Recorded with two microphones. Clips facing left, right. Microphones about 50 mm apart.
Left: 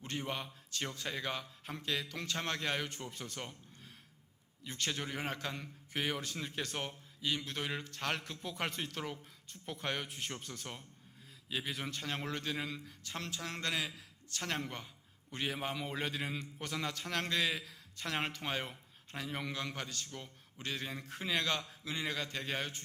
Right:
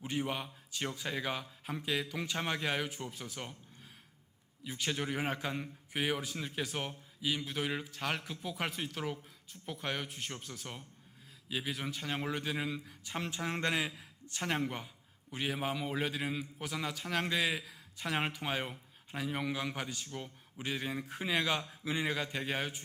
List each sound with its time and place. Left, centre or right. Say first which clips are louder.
0.0 s a man's voice: right 4 dB; centre
4.6 s a man's voice: right 3 dB; centre